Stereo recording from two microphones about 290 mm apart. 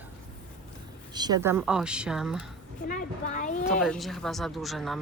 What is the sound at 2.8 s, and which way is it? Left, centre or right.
Speech, left.